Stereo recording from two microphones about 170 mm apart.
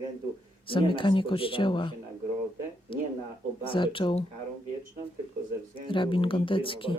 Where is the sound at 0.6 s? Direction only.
30° left (ahead or behind).